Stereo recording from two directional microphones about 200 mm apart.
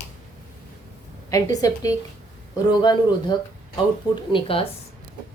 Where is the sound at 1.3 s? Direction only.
15° left (ahead or behind).